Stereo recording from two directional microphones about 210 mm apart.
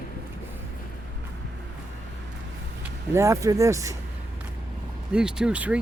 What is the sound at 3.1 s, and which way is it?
Speech, 15° right (ahead or behind).